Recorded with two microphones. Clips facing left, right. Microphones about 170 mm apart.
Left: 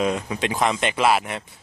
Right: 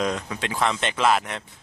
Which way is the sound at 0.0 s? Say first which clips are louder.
Left 3 dB; 10° left (ahead or behind).